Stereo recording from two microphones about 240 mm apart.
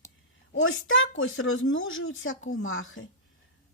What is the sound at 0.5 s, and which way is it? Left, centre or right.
Speech, left.